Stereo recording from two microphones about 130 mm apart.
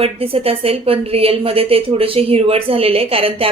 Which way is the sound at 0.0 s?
50° right (ahead or behind).